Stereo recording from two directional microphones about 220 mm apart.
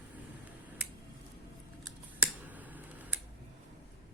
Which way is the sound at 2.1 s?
5° right (ahead or behind).